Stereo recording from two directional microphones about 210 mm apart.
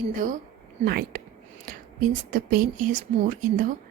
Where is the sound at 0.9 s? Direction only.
45° right (ahead or behind).